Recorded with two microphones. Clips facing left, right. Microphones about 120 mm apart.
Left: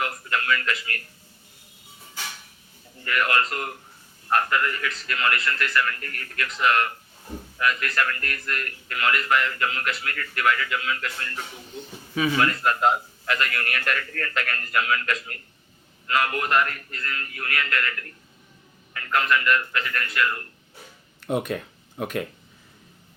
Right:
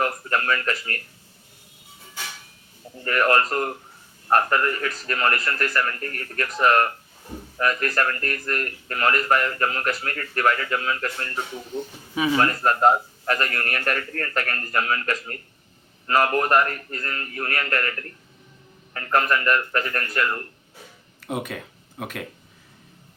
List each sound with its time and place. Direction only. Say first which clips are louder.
0.0 s speech: right 4 dB; 40° right (ahead or behind)
3.0 s speech: right 4 dB; 35° right (ahead or behind)
12.1 s speech: right 2 dB; 20° right (ahead or behind)
12.4 s speech: right 4 dB; 40° right (ahead or behind)
18.9 s speech: right 2 dB; 40° right (ahead or behind)
21.2 s speech: left 4 dB; 5° right (ahead or behind)